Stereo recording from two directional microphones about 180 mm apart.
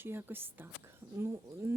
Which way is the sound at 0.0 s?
10° right (ahead or behind).